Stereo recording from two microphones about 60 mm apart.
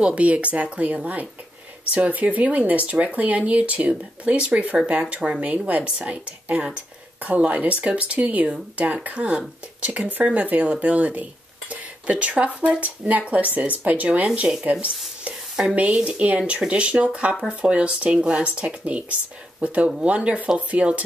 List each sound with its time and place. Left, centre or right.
0.0 s speech: right